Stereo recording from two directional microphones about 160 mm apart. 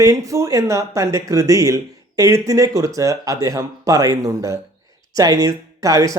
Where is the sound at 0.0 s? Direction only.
20° right (ahead or behind).